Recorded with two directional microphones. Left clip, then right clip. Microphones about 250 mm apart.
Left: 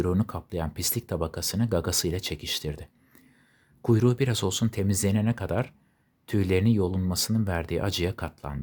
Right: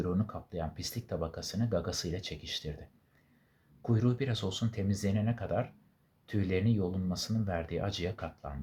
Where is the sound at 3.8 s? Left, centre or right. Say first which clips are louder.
Left 9 dB; left.